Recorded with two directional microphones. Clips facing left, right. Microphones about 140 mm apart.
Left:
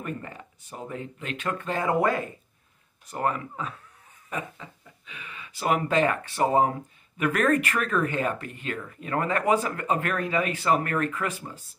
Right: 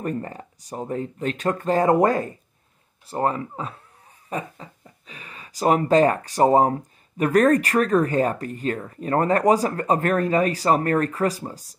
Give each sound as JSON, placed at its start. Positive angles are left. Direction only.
{"t": 0.0, "sound": "speech", "side_deg": -35}